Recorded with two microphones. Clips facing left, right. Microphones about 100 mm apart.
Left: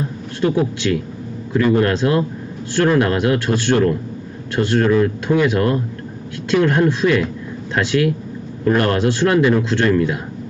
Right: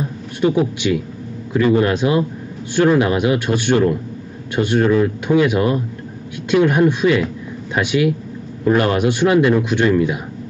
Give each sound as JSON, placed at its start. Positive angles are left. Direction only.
{"t": 0.4, "sound": "speech", "side_deg": -10}